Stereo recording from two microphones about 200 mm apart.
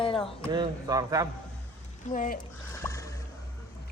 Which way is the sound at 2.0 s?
40° left (ahead or behind).